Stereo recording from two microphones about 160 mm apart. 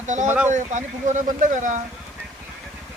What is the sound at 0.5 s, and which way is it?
Speech, 50° right (ahead or behind).